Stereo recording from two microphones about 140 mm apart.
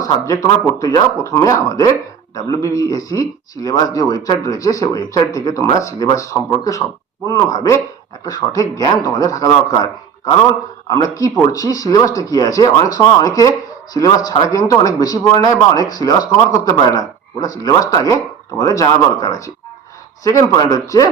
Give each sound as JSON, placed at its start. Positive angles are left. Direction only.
{"t": 0.0, "sound": "a man's voice", "side_deg": 25}
{"t": 10.8, "sound": "a man's voice", "side_deg": 25}